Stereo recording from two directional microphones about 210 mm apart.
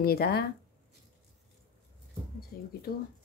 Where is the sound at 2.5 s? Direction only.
50° left (ahead or behind).